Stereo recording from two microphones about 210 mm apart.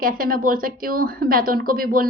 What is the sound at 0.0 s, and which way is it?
Speech, 40° right (ahead or behind).